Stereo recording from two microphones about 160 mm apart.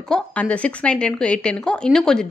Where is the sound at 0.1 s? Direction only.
10° left (ahead or behind).